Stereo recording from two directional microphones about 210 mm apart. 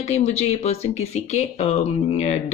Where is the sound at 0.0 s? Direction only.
30° left (ahead or behind).